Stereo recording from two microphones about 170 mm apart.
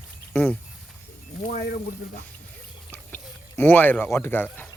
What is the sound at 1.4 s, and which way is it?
Speech, 60° left (ahead or behind).